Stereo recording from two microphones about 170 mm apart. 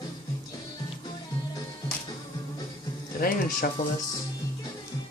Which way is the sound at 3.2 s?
60° left (ahead or behind).